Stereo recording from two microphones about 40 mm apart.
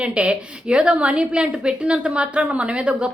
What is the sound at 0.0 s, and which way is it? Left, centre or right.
A woman's voice, right.